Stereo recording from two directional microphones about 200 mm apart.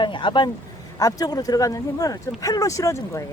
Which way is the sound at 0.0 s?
25° left (ahead or behind).